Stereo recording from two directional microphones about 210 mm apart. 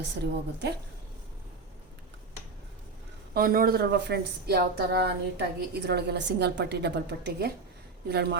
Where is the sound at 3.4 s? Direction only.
45° right (ahead or behind).